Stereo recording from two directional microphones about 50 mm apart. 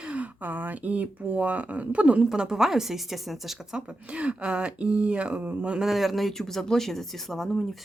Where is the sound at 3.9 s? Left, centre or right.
Right.